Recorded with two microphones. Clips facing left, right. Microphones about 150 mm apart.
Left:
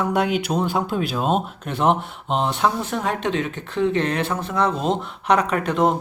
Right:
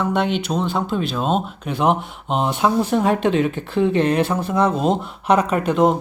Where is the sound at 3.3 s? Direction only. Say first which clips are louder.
Right 5 dB; 10° right (ahead or behind).